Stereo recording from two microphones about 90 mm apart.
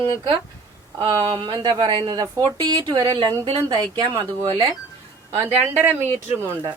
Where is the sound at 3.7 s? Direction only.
50° right (ahead or behind).